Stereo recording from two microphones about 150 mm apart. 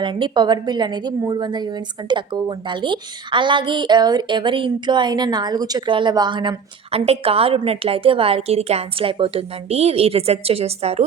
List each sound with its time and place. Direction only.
0.0 s a woman's voice: 30° right (ahead or behind)